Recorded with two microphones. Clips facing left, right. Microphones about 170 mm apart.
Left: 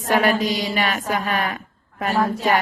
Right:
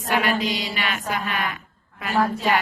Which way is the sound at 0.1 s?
45° left (ahead or behind).